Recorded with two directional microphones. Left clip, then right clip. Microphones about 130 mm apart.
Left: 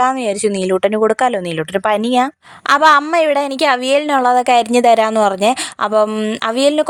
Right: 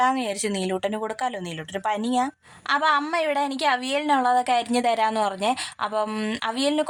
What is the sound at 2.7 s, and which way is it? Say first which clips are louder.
A woman's voice: left 11 dB; 70° left (ahead or behind).